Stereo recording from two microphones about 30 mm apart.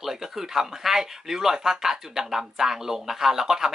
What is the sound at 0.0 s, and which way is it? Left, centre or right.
Speech, centre.